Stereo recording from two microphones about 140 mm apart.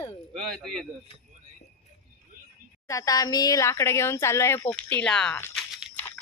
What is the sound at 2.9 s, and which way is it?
Speech, 25° left (ahead or behind).